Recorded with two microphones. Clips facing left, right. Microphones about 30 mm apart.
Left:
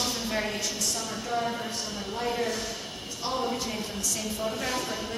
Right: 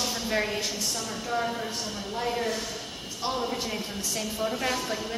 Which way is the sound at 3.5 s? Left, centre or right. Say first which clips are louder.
Even; centre.